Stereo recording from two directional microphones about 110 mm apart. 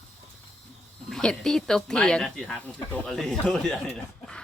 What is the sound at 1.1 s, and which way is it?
Speech, 5° left (ahead or behind).